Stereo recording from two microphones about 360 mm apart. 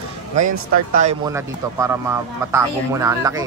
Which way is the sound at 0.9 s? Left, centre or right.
Centre.